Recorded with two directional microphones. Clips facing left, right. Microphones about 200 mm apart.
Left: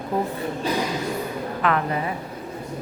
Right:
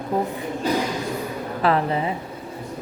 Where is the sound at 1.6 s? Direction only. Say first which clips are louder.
Right 3 dB; 30° right (ahead or behind).